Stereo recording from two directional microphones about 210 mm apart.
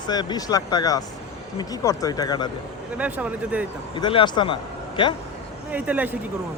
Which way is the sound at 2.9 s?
5° right (ahead or behind).